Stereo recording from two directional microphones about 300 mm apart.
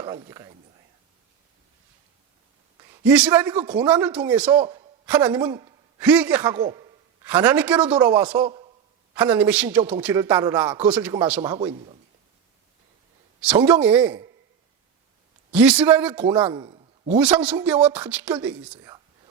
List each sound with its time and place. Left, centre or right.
0.0 s speech: centre
2.8 s a man's voice: centre
4.6 s a man's voice: centre
5.0 s a man's voice: centre
13.4 s a man's voice: centre
15.5 s a man's voice: centre
16.5 s a man's voice: centre
17.4 s a man's voice: centre